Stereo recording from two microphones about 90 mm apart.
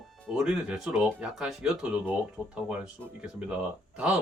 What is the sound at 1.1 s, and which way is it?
Speech, 20° right (ahead or behind).